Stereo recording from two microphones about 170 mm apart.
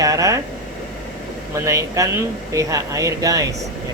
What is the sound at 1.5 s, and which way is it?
Speech, 15° right (ahead or behind).